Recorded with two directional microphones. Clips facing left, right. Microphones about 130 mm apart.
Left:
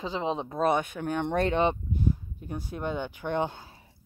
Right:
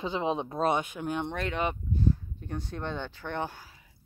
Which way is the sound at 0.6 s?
50° left (ahead or behind).